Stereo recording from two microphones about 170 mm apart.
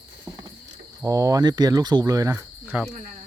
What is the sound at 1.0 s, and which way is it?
Speech, 20° right (ahead or behind).